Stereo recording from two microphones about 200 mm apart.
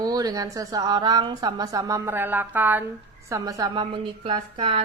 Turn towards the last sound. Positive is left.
turn(degrees=-25)  # may be behind; listen again after turning